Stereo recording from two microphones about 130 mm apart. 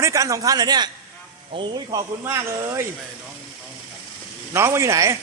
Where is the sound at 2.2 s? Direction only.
20° right (ahead or behind).